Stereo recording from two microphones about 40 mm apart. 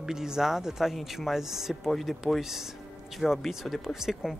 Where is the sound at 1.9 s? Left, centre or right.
Centre.